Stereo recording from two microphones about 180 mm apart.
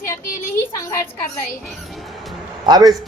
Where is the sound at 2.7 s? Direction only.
20° right (ahead or behind).